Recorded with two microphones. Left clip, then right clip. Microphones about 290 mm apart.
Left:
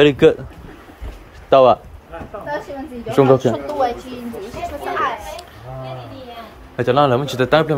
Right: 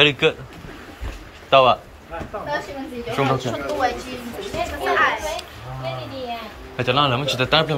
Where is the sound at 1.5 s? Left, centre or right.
Left.